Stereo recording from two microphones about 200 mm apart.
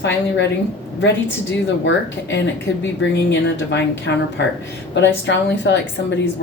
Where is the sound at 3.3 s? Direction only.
65° left (ahead or behind).